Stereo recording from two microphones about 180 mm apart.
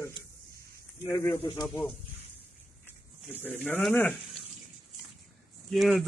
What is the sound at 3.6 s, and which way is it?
Speech, 10° left (ahead or behind).